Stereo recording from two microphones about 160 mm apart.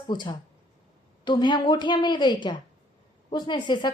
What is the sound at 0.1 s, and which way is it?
Speech, 30° left (ahead or behind).